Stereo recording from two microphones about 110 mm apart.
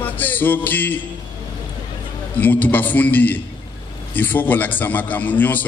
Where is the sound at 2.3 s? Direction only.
15° left (ahead or behind).